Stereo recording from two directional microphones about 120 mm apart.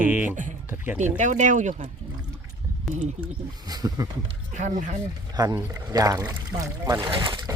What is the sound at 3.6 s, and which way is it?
Speech, 35° right (ahead or behind).